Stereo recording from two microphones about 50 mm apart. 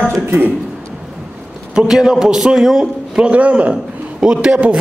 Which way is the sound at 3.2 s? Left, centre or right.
Right.